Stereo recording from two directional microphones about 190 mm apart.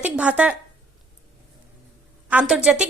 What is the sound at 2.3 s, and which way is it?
Speech, 5° right (ahead or behind).